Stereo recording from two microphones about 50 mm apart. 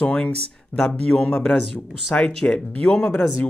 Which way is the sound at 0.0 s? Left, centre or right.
Left.